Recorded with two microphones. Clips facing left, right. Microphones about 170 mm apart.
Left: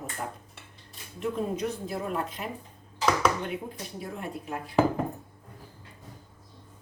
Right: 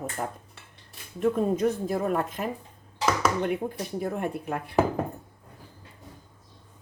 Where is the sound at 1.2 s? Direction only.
45° right (ahead or behind).